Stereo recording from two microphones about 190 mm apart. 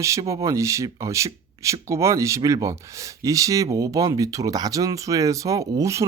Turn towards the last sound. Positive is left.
turn(degrees=-15)  # may be behind; listen again after turning